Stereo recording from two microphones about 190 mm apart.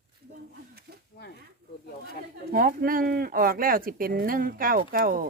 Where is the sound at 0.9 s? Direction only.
55° right (ahead or behind).